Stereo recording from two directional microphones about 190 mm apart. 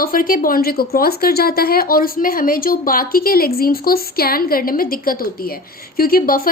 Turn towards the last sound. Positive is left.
turn(degrees=50)  # may be behind; listen again after turning